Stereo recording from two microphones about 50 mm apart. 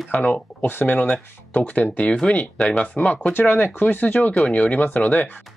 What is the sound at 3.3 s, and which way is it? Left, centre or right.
Speech, left.